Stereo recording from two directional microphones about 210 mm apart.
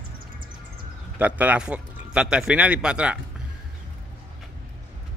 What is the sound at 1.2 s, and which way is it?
A man's voice, 5° right (ahead or behind).